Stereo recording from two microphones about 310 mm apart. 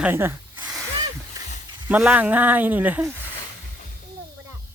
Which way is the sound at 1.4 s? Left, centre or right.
Centre.